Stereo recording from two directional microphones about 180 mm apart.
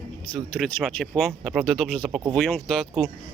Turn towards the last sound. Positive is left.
turn(degrees=0)  # may be behind; listen again after turning